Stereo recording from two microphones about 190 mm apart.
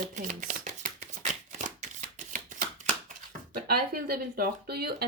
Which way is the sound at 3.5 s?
55° right (ahead or behind).